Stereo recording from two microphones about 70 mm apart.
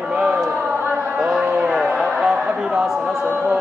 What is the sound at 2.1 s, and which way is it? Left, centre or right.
Chatter, centre.